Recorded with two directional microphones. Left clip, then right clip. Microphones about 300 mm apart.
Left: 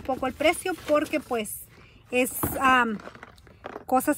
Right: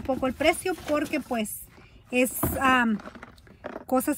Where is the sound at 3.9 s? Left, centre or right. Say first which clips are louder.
Left 2 dB; centre.